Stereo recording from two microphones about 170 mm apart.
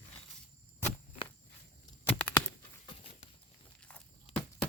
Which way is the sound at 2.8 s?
35° left (ahead or behind).